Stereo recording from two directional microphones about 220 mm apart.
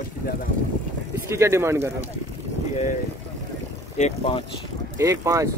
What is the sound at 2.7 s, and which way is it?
Speech, 35° left (ahead or behind).